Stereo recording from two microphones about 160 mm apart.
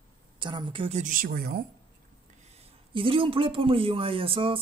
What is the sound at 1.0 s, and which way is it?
Speech, 60° right (ahead or behind).